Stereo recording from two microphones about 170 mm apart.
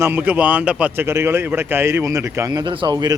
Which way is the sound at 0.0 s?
10° right (ahead or behind).